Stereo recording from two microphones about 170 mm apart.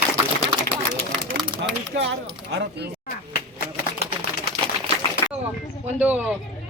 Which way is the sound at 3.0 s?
60° left (ahead or behind).